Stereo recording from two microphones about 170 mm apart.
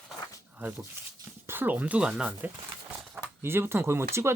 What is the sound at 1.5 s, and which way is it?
Speech, 10° right (ahead or behind).